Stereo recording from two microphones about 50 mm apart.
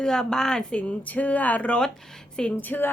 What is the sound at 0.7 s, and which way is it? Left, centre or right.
Speech, left.